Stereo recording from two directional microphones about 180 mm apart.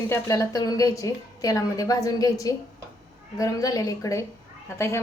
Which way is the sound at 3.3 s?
20° left (ahead or behind).